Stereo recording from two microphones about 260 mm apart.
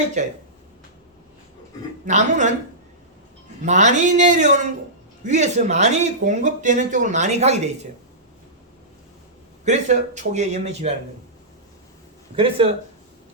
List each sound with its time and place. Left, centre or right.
0.2 s speech: right
2.0 s speech: right
3.7 s speech: right
9.6 s speech: right
12.6 s speech: centre